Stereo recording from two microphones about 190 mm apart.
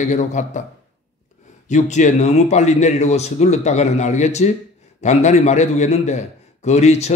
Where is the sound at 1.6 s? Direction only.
40° left (ahead or behind).